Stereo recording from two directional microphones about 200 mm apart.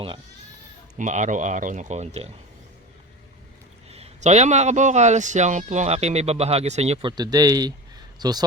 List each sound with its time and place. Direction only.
0.9 s a man's voice: 35° right (ahead or behind)
3.8 s a man's voice: 30° right (ahead or behind)
7.2 s speech: 20° right (ahead or behind)